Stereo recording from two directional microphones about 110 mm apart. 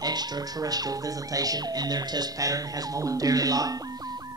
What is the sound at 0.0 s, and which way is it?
Music, 35° right (ahead or behind).